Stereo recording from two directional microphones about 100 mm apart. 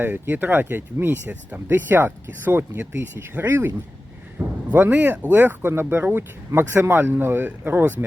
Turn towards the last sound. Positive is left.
turn(degrees=-20)  # may be behind; listen again after turning